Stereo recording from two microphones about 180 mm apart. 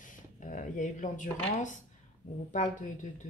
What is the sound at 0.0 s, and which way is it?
Speech, 45° left (ahead or behind).